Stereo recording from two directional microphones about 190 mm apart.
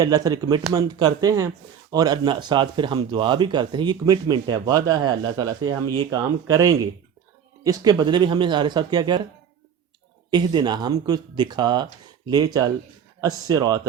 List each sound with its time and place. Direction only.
0.0 s speech: 20° right (ahead or behind)
10.3 s speech: 20° right (ahead or behind)